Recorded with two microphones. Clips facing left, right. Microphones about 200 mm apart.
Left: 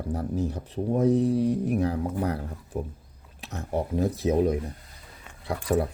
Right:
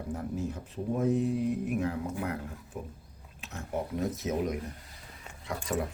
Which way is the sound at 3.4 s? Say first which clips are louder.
Left 5 dB; 35° left (ahead or behind).